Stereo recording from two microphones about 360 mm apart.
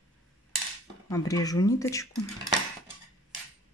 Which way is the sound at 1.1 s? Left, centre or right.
Centre.